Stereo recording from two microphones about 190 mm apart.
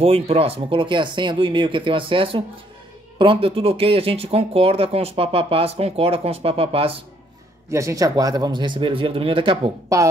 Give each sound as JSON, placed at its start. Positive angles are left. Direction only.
{"t": 0.0, "sound": "speech", "side_deg": -30}
{"t": 7.7, "sound": "speech", "side_deg": -15}